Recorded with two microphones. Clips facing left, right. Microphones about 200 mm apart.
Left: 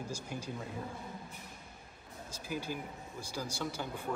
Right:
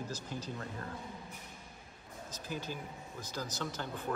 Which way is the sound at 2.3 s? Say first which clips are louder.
Left 2 dB; 10° left (ahead or behind).